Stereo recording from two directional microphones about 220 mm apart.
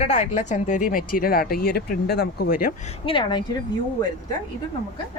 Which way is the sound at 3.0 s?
20° left (ahead or behind).